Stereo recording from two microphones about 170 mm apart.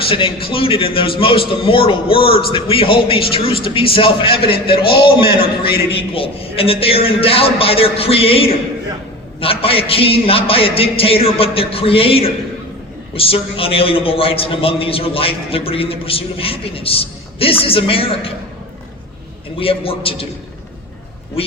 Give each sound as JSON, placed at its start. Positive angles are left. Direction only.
{"t": 0.1, "sound": "a man's voice", "side_deg": 30}
{"t": 4.7, "sound": "a man's voice", "side_deg": 65}
{"t": 5.9, "sound": "a man's voice", "side_deg": 35}
{"t": 19.5, "sound": "a man's voice", "side_deg": 35}
{"t": 21.4, "sound": "speech", "side_deg": 35}